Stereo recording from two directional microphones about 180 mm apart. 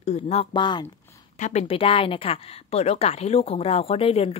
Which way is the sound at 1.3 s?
40° left (ahead or behind).